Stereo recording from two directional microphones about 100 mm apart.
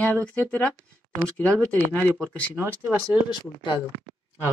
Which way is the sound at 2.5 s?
20° right (ahead or behind).